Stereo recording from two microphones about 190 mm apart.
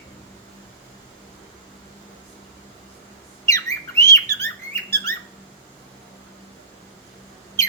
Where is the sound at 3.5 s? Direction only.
15° left (ahead or behind).